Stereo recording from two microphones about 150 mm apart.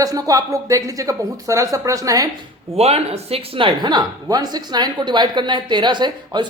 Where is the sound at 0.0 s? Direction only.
25° right (ahead or behind).